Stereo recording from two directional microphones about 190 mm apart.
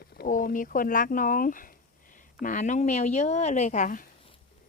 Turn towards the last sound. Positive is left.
turn(degrees=40)  # may be behind; listen again after turning